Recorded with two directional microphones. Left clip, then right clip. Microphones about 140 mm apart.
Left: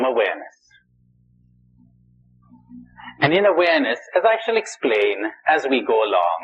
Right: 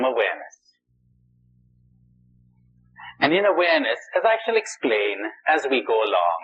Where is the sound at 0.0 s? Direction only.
35° right (ahead or behind).